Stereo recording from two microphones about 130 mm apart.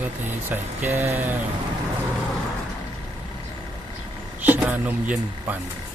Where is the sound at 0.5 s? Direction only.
15° right (ahead or behind).